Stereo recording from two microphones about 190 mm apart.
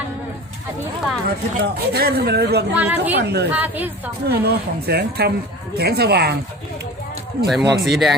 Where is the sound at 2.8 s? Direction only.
10° right (ahead or behind).